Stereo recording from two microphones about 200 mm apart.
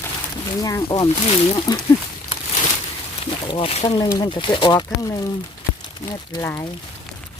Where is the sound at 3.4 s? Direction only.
30° left (ahead or behind).